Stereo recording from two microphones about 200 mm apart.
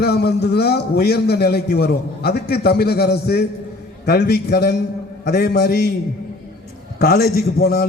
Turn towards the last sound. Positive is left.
turn(degrees=55)  # may be behind; listen again after turning